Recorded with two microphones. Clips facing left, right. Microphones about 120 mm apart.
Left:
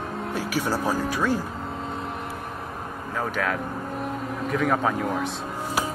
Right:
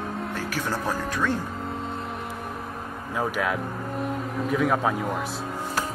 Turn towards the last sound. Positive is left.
turn(degrees=0)  # may be behind; listen again after turning